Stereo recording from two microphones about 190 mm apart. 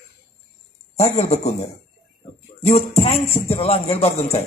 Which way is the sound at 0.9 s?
35° left (ahead or behind).